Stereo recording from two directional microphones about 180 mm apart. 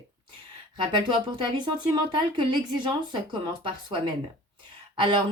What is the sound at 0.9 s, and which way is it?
A woman's voice, 25° right (ahead or behind).